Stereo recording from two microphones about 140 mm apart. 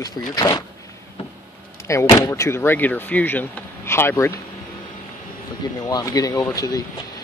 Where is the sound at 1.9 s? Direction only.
20° left (ahead or behind).